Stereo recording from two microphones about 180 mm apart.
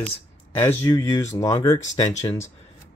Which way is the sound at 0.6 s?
15° left (ahead or behind).